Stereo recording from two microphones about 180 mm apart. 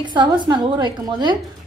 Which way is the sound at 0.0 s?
25° right (ahead or behind).